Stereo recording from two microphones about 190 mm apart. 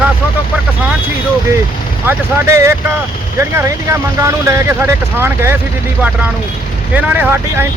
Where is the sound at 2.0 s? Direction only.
10° right (ahead or behind).